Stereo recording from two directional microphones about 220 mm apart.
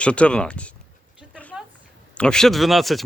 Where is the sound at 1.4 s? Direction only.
5° left (ahead or behind).